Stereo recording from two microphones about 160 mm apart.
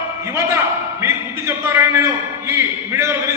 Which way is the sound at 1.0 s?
15° right (ahead or behind).